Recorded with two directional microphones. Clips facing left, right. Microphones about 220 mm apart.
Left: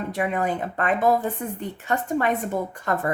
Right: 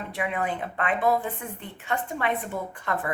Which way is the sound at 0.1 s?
40° left (ahead or behind).